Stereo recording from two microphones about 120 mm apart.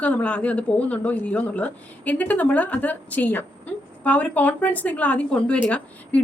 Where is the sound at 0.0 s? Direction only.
10° left (ahead or behind).